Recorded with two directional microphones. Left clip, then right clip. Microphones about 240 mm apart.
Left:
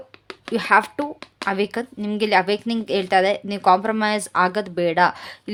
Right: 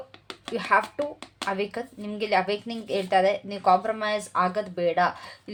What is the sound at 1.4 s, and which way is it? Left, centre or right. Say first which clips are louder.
Speech: left 6 dB; left.